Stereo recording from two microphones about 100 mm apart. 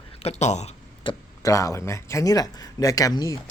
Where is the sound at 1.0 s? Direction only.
55° left (ahead or behind).